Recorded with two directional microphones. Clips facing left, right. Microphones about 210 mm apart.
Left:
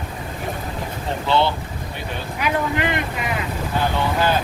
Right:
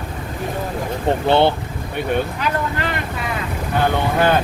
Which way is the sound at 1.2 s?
55° right (ahead or behind).